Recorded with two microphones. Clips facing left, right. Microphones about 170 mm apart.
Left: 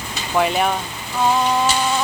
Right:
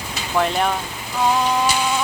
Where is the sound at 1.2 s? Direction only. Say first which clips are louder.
Left 1 dB; centre (ahead or behind).